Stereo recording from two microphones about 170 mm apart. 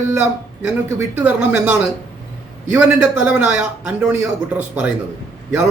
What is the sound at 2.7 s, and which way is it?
Speech, 5° right (ahead or behind).